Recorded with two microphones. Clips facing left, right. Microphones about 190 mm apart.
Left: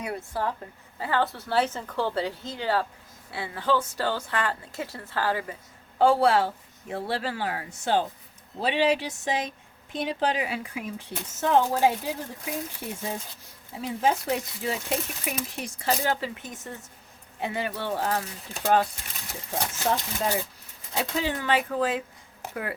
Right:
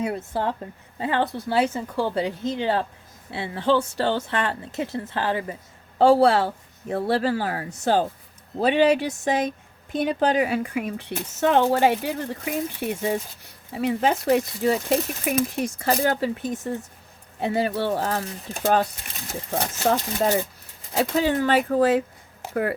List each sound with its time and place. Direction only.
0.0 s a woman's voice: 25° right (ahead or behind); by 18.9 s 40° right (ahead or behind)
19.3 s speech: 55° right (ahead or behind)